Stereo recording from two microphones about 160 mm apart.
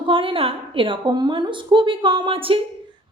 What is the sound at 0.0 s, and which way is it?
A woman's voice, 35° right (ahead or behind).